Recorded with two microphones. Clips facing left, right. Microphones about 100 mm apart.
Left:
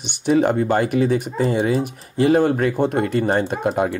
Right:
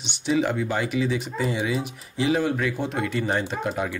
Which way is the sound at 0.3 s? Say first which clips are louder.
Left 7 dB; 50° left (ahead or behind).